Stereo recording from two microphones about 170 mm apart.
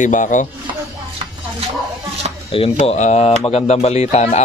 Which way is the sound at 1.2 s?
35° right (ahead or behind).